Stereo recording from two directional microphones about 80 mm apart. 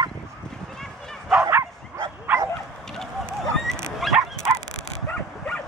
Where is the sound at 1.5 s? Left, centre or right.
Right.